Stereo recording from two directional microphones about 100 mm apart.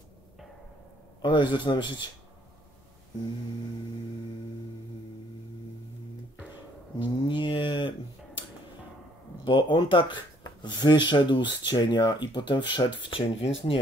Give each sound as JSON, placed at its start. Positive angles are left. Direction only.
{"t": 1.2, "sound": "speech", "side_deg": 50}
{"t": 7.0, "sound": "speech", "side_deg": 50}
{"t": 9.4, "sound": "speech", "side_deg": 50}